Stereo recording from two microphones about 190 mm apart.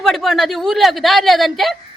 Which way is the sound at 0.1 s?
Centre (ahead or behind).